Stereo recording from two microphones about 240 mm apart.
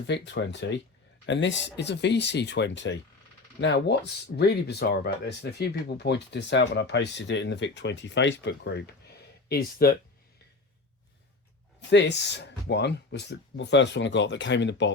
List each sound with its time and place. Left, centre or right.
0.1 s speech: left
11.9 s speech: left